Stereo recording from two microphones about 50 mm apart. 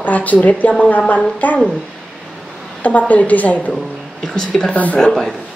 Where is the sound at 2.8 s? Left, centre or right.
Left.